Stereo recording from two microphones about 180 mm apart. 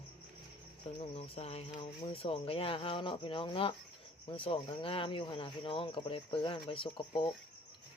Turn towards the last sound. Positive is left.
turn(degrees=30)  # may be behind; listen again after turning